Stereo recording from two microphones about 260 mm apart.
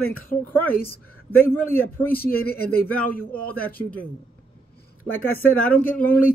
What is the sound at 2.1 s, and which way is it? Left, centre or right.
A man's voice, left.